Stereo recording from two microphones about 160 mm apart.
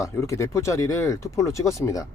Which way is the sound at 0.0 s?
20° left (ahead or behind).